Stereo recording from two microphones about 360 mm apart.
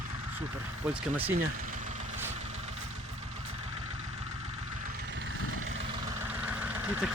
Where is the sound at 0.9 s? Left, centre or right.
Centre.